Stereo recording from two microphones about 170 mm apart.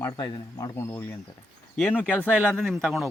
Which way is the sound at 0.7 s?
15° left (ahead or behind).